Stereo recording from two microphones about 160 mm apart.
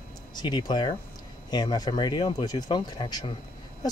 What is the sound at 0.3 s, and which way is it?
Speech, 25° left (ahead or behind).